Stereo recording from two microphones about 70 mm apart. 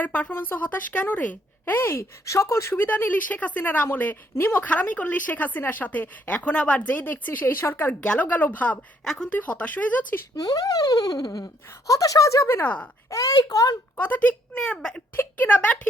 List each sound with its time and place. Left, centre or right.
0.0 s speech: left
2.8 s speech: left
8.0 s speech: centre
9.0 s speech: centre
9.3 s speech: left
10.3 s a sound: left
11.9 s speech: left
13.1 s a sound: left
13.9 s speech: left
14.6 s speech: centre
15.1 s speech: left